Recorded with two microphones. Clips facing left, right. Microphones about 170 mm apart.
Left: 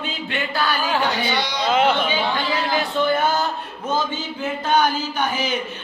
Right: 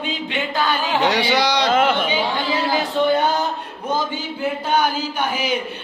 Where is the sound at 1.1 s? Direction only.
80° right.